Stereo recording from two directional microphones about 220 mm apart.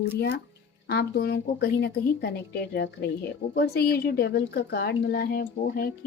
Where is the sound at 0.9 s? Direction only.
45° left (ahead or behind).